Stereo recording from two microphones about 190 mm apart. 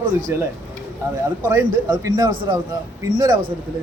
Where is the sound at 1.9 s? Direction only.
20° right (ahead or behind).